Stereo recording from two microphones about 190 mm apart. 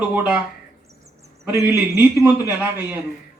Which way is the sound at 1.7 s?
15° right (ahead or behind).